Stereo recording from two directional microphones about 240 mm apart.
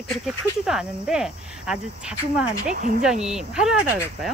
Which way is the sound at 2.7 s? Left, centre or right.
Right.